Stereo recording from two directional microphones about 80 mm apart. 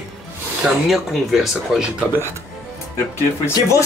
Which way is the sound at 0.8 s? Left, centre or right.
Centre.